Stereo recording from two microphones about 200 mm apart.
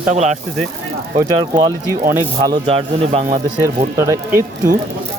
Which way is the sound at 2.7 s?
30° right (ahead or behind).